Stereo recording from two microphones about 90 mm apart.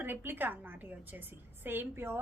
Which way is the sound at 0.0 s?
25° right (ahead or behind).